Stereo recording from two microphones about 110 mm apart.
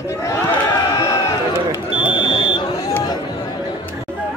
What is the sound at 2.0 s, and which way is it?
Smoke detector, 50° left (ahead or behind).